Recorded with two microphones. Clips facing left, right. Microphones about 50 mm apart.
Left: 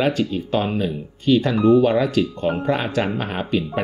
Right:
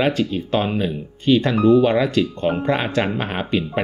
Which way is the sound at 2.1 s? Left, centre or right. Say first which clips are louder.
Right 1 dB; right.